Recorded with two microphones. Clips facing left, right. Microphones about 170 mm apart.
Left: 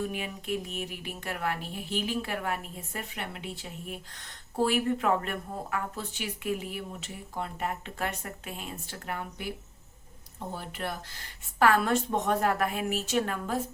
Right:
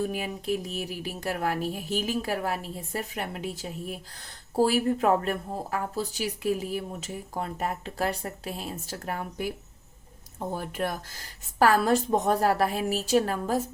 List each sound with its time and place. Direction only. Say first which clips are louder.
0.0 s a woman's voice: right 4 dB; 35° right (ahead or behind)
10.5 s a woman's voice: right 5 dB; 45° right (ahead or behind)